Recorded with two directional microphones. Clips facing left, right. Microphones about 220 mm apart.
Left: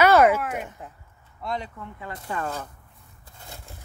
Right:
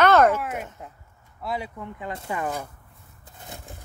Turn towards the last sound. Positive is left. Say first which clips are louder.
# right 3 dB
turn(degrees=-20)  # may be behind; listen again after turning